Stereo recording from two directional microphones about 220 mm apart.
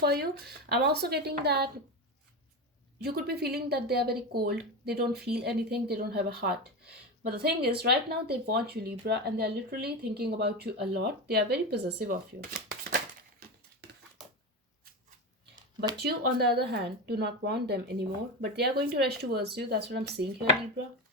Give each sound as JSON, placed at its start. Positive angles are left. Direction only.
{"t": 0.0, "sound": "speech", "side_deg": -45}
{"t": 3.0, "sound": "speech", "side_deg": -45}
{"t": 16.0, "sound": "speech", "side_deg": -45}